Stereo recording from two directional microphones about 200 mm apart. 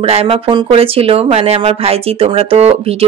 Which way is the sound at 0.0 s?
30° right (ahead or behind).